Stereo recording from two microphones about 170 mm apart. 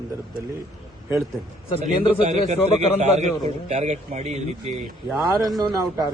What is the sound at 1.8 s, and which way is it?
A man's voice, 40° right (ahead or behind).